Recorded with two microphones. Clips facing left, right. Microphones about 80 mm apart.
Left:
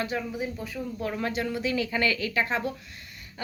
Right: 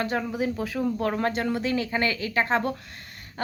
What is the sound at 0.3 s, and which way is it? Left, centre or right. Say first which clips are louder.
Speech: right 5 dB; right.